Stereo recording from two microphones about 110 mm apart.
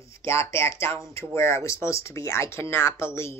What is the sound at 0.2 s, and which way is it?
Speech, 25° left (ahead or behind).